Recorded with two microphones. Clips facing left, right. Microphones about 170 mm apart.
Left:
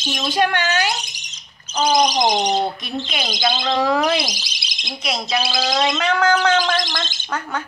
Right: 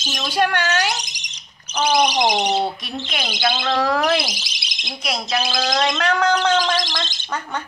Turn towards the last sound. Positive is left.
turn(degrees=0)  # may be behind; listen again after turning